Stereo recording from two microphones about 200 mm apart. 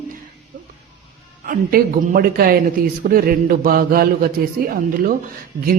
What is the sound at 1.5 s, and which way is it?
A man's voice, 45° right (ahead or behind).